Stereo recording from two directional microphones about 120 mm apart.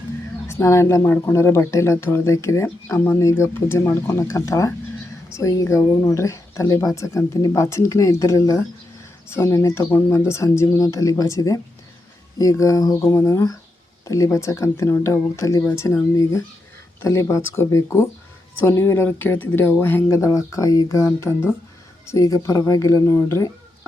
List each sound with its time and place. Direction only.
0.4 s speech: 25° left (ahead or behind)